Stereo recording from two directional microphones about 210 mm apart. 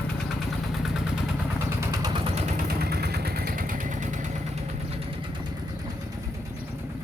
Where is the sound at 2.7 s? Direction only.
50° right (ahead or behind).